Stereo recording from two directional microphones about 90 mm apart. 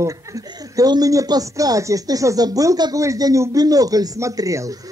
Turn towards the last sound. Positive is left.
turn(degrees=-40)  # may be behind; listen again after turning